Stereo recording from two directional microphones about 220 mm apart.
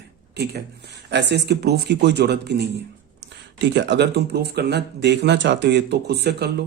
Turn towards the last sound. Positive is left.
turn(degrees=-50)  # may be behind; listen again after turning